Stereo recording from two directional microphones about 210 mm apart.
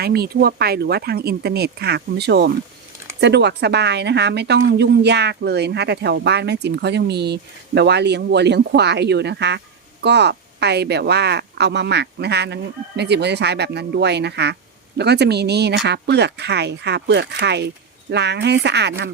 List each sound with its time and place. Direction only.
0.0 s a woman's voice: 50° right (ahead or behind)